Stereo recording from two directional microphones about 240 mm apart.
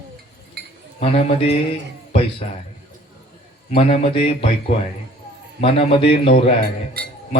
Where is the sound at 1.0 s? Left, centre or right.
Left.